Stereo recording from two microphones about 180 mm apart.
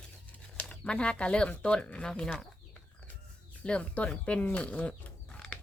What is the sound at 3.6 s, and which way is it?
Speech, 5° left (ahead or behind).